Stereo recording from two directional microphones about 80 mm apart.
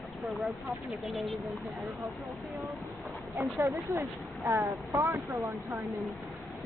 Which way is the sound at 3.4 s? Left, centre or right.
Right.